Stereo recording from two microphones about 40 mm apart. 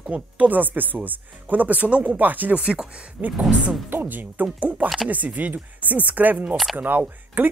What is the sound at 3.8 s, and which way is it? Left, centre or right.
Speech, right.